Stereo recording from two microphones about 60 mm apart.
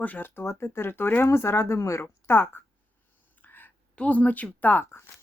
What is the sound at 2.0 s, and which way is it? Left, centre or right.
Speech, left.